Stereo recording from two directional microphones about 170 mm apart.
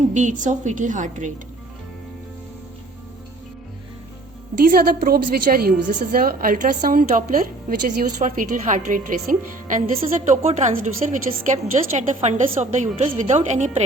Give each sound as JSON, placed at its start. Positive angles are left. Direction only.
{"t": 0.1, "sound": "a woman's voice", "side_deg": -45}
{"t": 4.7, "sound": "a woman's voice", "side_deg": -60}
{"t": 9.9, "sound": "a woman's voice", "side_deg": -35}